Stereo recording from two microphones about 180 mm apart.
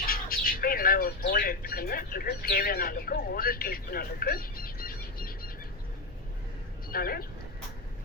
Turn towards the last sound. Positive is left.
turn(degrees=55)  # may be behind; listen again after turning